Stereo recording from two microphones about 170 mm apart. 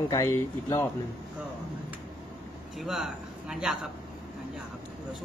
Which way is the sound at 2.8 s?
Centre (ahead or behind).